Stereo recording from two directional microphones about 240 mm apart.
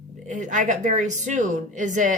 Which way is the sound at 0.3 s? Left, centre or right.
Right.